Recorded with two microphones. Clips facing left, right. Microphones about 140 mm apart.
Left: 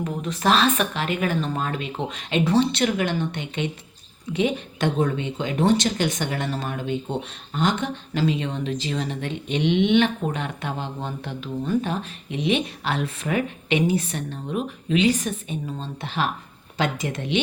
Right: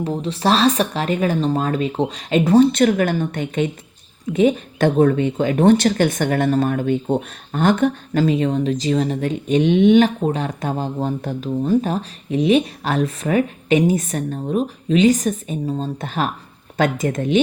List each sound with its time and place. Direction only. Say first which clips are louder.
0.0 s speech: right 4 dB; 30° right (ahead or behind)